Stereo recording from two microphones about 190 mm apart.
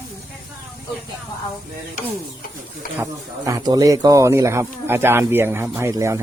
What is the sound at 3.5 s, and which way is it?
Speech, 15° right (ahead or behind).